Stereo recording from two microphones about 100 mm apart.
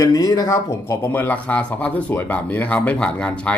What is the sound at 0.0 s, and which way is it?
Speech, 35° left (ahead or behind).